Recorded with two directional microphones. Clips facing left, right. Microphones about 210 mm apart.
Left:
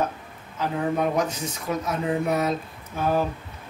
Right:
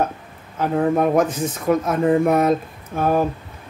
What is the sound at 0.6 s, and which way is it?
Speech, 50° right (ahead or behind).